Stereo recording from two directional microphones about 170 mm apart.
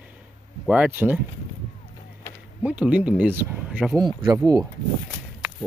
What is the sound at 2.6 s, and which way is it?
Speech, 5° right (ahead or behind).